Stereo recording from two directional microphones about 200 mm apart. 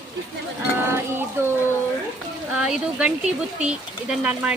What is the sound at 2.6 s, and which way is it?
Speech, 5° right (ahead or behind).